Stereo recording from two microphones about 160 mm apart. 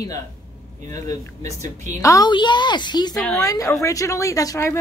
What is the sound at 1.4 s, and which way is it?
Speech, 50° right (ahead or behind).